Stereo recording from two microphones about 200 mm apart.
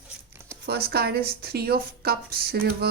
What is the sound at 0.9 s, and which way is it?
Speech, 50° right (ahead or behind).